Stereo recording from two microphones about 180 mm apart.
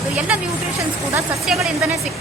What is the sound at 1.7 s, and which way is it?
Speech, 15° right (ahead or behind).